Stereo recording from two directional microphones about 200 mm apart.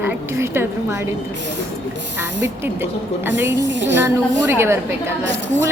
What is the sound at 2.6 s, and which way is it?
Speech, 10° right (ahead or behind).